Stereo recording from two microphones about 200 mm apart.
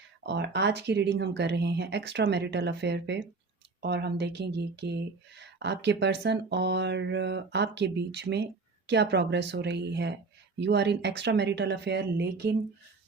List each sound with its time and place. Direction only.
0.2 s speech: 60° right (ahead or behind)